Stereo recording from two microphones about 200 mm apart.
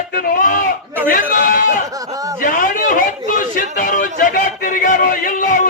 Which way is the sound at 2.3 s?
40° left (ahead or behind).